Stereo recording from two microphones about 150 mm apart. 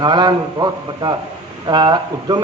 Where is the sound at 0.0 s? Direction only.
30° right (ahead or behind).